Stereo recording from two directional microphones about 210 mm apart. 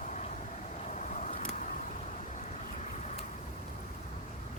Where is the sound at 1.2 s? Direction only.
35° left (ahead or behind).